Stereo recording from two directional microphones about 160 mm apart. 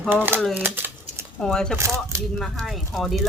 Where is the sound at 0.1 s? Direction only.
10° right (ahead or behind).